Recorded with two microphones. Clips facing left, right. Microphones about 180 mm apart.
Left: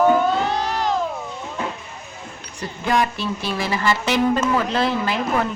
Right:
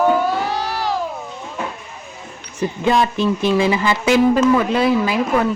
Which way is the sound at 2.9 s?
20° right (ahead or behind).